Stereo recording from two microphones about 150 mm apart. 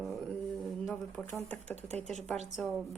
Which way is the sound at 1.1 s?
10° left (ahead or behind).